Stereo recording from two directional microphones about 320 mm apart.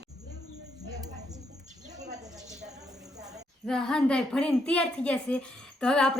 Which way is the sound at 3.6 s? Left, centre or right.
Centre.